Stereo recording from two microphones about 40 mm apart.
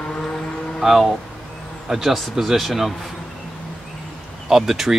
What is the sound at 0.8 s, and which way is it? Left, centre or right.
Speech, centre.